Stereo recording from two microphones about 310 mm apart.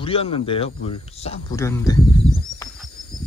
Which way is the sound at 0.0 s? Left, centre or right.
Centre.